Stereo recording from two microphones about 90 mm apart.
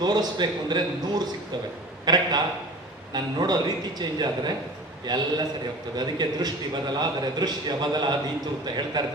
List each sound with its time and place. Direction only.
0.0 s a man's voice: 50° right (ahead or behind)